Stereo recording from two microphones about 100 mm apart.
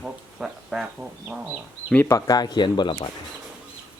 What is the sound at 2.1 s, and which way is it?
Speech, 35° left (ahead or behind).